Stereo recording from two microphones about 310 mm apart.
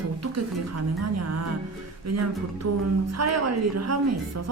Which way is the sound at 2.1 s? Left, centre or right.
Right.